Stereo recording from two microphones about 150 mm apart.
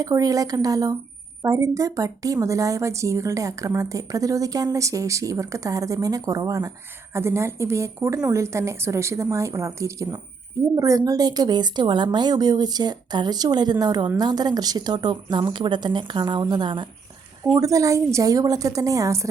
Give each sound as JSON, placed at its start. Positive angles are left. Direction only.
{"t": 0.0, "sound": "speech", "side_deg": -25}